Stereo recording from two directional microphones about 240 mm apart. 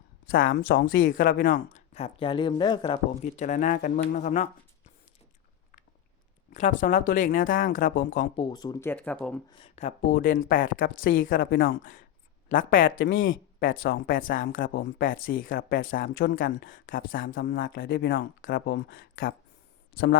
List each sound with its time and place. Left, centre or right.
0.3 s speech: left
1.3 s speech: left
6.5 s speech: left
8.4 s speech: centre
9.5 s speech: left
13.0 s speech: left
13.6 s speech: left
14.7 s speech: left
15.0 s speech: left
16.1 s speech: left
16.4 s speech: left